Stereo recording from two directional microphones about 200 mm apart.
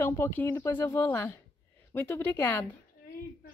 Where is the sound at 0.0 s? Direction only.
10° left (ahead or behind).